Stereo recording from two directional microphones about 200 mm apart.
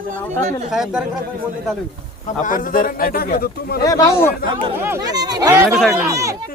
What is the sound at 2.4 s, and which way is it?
A man's voice, 45° left (ahead or behind).